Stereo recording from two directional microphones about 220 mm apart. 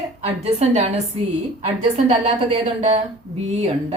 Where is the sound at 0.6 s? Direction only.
30° right (ahead or behind).